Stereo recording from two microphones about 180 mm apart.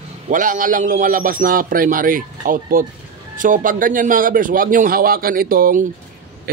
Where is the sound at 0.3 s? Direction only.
45° right (ahead or behind).